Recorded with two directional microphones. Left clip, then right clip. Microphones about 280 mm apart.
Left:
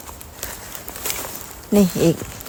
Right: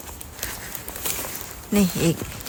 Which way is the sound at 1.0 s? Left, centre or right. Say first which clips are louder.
Left 3 dB; centre.